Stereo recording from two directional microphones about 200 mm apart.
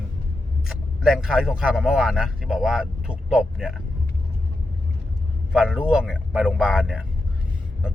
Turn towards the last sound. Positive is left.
turn(degrees=-5)  # may be behind; listen again after turning